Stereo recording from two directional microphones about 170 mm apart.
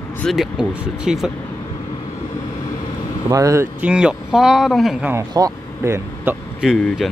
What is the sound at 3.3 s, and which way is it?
Speech, 20° right (ahead or behind).